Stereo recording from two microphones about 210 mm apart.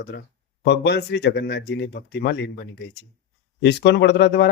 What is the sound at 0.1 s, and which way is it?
Speech, 55° left (ahead or behind).